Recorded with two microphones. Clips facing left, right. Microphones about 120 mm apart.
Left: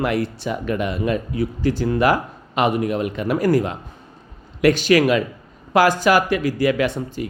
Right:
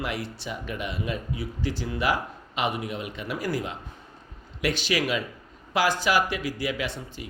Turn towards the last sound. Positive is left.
turn(degrees=50)  # may be behind; listen again after turning